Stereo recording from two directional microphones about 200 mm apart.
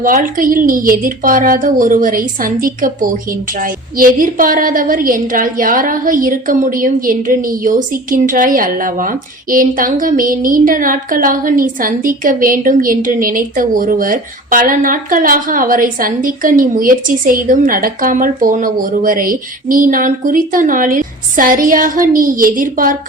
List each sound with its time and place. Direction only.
0.0 s a woman's voice: 45° right (ahead or behind)